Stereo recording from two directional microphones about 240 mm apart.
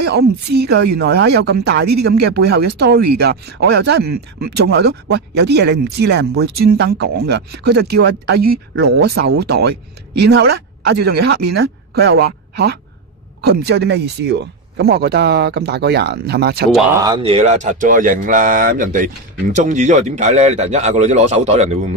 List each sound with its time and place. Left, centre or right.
0.0 s speech: right
17.0 s speech: right